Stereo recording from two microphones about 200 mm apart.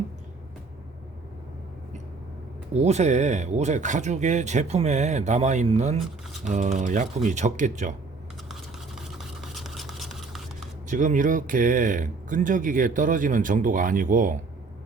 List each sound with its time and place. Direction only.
2.7 s speech: 35° right (ahead or behind)
9.0 s a sound: centre (ahead or behind)
10.8 s speech: 40° right (ahead or behind)